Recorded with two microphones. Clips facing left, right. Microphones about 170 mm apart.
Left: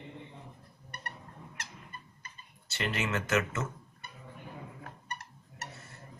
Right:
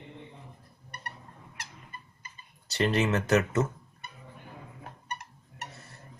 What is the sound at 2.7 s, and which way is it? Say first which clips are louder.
Speech: right 7 dB; 35° right (ahead or behind).